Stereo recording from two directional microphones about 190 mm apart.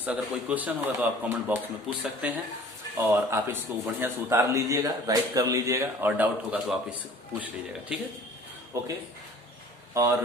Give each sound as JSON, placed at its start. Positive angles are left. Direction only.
{"t": 0.0, "sound": "a man's voice", "side_deg": -10}
{"t": 9.9, "sound": "speech", "side_deg": -15}